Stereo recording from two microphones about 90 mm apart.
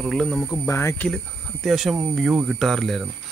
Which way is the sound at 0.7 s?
30° left (ahead or behind).